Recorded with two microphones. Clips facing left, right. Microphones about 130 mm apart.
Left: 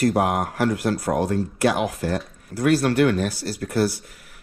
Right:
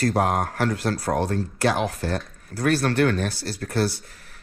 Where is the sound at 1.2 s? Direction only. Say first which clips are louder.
Left 2 dB; 30° right (ahead or behind).